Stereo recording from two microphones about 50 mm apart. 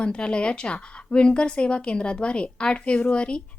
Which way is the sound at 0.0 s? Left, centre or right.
Left.